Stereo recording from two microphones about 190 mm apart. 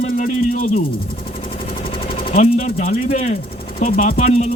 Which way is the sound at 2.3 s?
35° left (ahead or behind).